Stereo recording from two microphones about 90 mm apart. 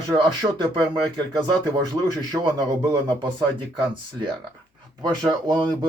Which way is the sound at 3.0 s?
60° right (ahead or behind).